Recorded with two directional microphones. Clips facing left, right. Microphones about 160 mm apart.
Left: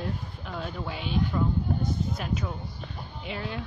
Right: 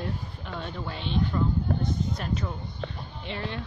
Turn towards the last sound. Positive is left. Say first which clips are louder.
# even
turn(degrees=5)  # may be behind; listen again after turning